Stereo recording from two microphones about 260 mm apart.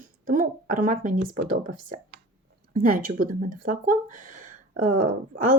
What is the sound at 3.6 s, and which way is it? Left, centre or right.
Speech, right.